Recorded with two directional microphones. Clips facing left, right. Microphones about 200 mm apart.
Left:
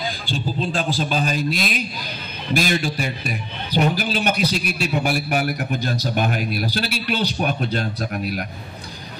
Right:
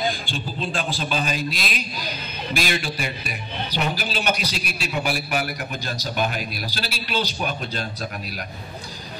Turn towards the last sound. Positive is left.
turn(degrees=55)  # may be behind; listen again after turning